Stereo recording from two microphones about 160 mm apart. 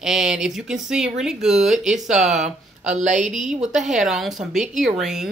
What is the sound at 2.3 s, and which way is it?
Speech, 45° right (ahead or behind).